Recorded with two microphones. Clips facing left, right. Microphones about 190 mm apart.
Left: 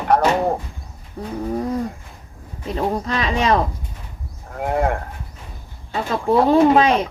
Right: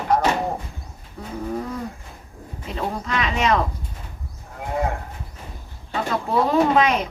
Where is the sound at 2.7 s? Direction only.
35° left (ahead or behind).